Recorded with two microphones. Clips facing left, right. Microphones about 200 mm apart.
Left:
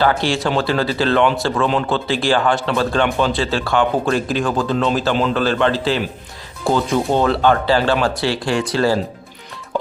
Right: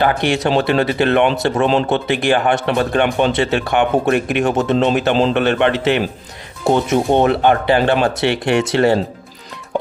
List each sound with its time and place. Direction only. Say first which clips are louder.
0.0 s speech: right 1 dB; 20° right (ahead or behind)